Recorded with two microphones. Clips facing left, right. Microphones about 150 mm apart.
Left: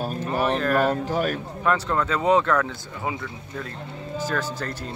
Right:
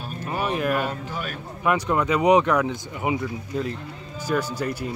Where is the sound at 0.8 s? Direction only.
40° left (ahead or behind).